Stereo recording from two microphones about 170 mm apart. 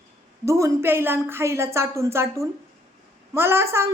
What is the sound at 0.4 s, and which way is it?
A woman's voice, 15° right (ahead or behind).